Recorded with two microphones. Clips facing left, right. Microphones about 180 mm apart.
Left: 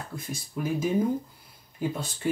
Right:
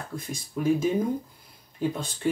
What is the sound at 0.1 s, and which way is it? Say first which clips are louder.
Speech: right 4 dB; 5° left (ahead or behind).